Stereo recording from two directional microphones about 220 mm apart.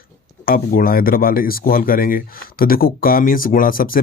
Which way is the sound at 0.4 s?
40° left (ahead or behind).